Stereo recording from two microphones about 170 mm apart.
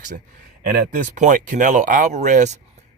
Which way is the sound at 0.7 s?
50° right (ahead or behind).